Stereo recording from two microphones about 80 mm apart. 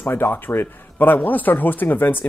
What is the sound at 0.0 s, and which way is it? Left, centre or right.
Speech, left.